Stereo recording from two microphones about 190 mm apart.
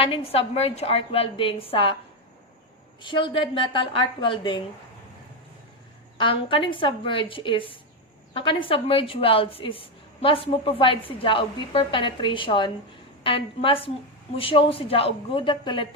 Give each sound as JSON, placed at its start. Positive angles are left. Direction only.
{"t": 0.0, "sound": "a woman's voice", "side_deg": 30}
{"t": 3.0, "sound": "a woman's voice", "side_deg": 25}
{"t": 6.1, "sound": "a woman's voice", "side_deg": 25}